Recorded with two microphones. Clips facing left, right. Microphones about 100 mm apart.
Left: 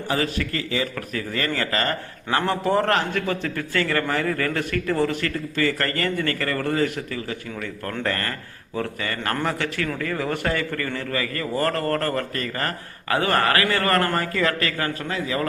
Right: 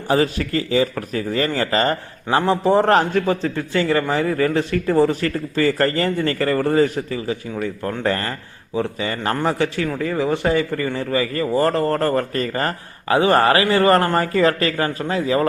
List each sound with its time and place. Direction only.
0.1 s a man's voice: 30° right (ahead or behind)